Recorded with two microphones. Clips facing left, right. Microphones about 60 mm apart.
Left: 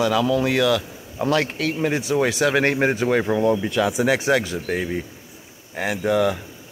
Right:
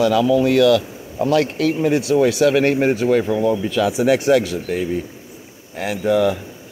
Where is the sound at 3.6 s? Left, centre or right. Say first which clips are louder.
Right 2 dB; centre.